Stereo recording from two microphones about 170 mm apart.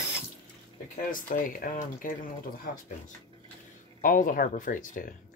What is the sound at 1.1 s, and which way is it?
Speech, 50° left (ahead or behind).